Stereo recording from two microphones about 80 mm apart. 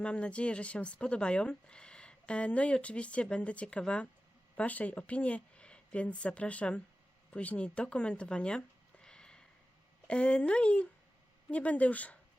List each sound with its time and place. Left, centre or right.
0.0 s speech: centre